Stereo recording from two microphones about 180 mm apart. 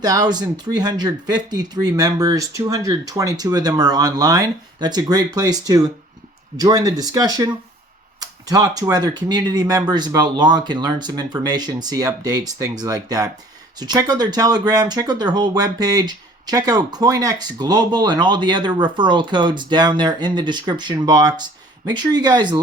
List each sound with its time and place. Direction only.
0.0 s speech: 20° right (ahead or behind)